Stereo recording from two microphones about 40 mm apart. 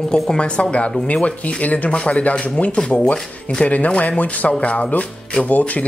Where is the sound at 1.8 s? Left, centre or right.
Left.